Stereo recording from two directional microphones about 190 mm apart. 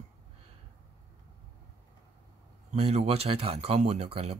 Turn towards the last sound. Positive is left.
turn(degrees=-30)  # may be behind; listen again after turning